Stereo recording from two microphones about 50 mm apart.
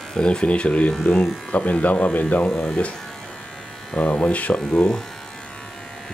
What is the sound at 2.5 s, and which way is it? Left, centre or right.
Speech, centre.